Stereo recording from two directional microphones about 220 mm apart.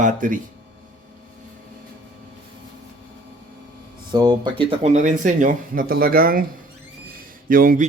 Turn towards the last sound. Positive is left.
turn(degrees=-40)  # may be behind; listen again after turning